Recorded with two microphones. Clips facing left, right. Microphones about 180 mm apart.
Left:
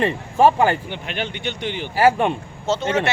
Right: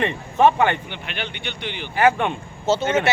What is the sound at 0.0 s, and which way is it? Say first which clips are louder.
Speech: left 1 dB; 35° left (ahead or behind).